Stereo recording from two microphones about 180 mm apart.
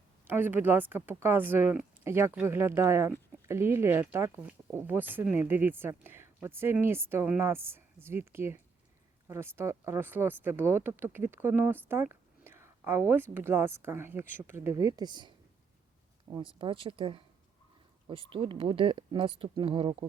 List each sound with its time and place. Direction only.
0.3 s speech: 10° right (ahead or behind)
16.6 s speech: 30° right (ahead or behind)